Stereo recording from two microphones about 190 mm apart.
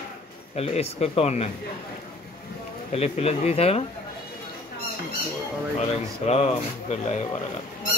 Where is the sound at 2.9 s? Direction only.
35° left (ahead or behind).